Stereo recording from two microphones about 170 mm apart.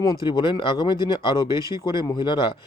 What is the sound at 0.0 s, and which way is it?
A man's voice, 25° left (ahead or behind).